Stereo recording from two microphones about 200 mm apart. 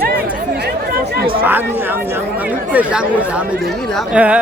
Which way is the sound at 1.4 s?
10° right (ahead or behind).